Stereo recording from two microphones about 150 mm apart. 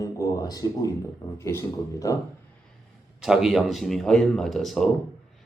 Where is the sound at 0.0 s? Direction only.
25° left (ahead or behind).